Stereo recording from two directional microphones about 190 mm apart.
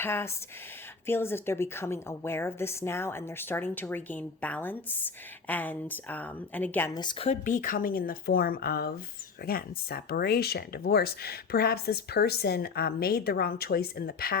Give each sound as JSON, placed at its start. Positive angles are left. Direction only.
{"t": 0.0, "sound": "a woman's voice", "side_deg": 10}
{"t": 7.3, "sound": "speech", "side_deg": 45}